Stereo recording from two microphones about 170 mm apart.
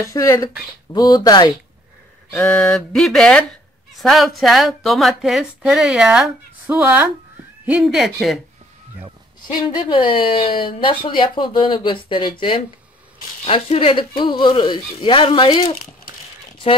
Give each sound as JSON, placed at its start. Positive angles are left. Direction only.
{"t": 0.0, "sound": "speech", "side_deg": 20}
{"t": 2.4, "sound": "a woman's voice", "side_deg": 5}
{"t": 9.5, "sound": "speech", "side_deg": 30}